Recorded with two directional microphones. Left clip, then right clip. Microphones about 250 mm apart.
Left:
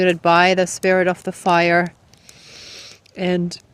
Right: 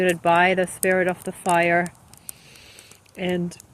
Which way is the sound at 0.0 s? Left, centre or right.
Left.